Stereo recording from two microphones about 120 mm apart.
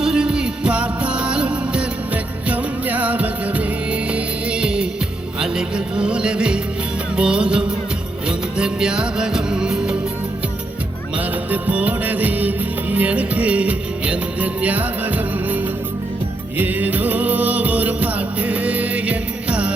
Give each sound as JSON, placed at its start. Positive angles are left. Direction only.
{"t": 0.0, "sound": "music", "side_deg": -5}
{"t": 11.5, "sound": "music", "side_deg": -10}